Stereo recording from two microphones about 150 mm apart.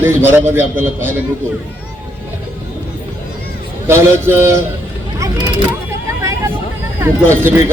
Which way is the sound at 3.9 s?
15° right (ahead or behind).